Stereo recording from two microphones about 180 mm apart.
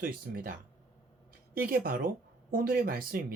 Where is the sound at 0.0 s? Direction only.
50° right (ahead or behind).